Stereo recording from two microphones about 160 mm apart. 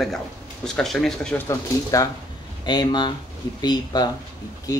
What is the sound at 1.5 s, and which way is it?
Speech, 20° left (ahead or behind).